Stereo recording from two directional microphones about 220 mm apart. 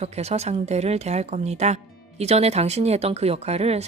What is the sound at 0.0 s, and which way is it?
A woman's voice, 30° right (ahead or behind).